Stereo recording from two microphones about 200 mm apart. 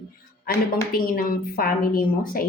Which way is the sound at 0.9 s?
45° left (ahead or behind).